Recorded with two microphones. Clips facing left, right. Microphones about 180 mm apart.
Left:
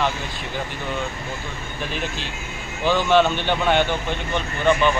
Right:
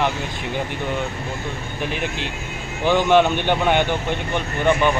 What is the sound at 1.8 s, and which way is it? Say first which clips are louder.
Speech: right 2 dB; 15° right (ahead or behind).